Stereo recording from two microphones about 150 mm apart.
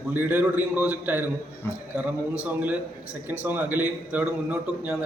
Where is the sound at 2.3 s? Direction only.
10° right (ahead or behind).